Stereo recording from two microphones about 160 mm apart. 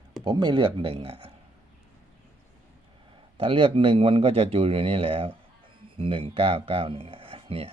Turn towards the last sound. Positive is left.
turn(degrees=-35)  # may be behind; listen again after turning